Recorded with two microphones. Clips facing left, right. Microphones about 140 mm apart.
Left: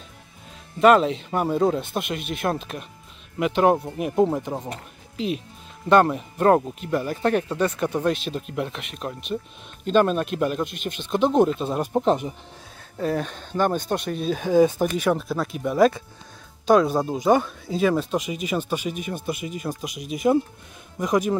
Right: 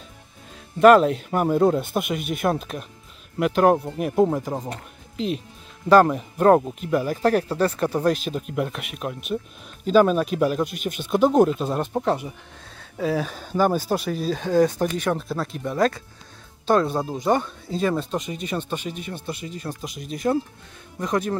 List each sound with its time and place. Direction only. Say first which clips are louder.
0.7 s speech: right 3 dB; centre (ahead or behind)
11.9 s speech: left 5 dB; 15° left (ahead or behind)
12.9 s speech: right 1 dB; centre (ahead or behind)